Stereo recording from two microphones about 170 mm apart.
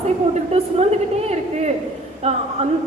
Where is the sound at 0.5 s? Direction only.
40° right (ahead or behind).